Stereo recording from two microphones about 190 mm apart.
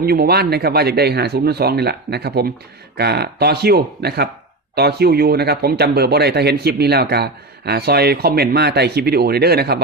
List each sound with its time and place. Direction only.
0.0 s speech: 55° right (ahead or behind)